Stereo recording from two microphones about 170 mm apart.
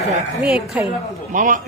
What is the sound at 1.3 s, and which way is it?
Speech, 50° right (ahead or behind).